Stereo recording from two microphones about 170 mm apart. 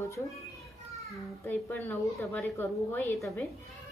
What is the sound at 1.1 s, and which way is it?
A child's voice, 10° left (ahead or behind).